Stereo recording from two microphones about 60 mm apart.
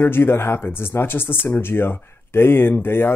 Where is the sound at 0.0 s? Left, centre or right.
Left.